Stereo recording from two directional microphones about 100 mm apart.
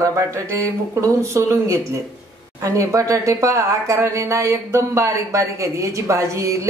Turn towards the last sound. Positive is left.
turn(degrees=-30)  # may be behind; listen again after turning